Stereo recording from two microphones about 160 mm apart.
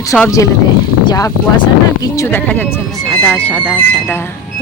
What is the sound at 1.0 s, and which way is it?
Speech, 20° left (ahead or behind).